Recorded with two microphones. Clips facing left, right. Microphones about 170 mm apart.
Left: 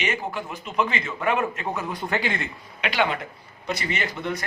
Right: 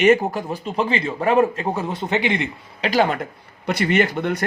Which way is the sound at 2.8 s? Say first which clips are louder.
Right 5 dB; 40° right (ahead or behind).